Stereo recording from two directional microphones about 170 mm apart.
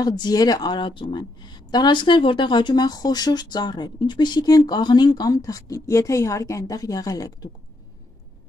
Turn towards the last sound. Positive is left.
turn(degrees=20)  # may be behind; listen again after turning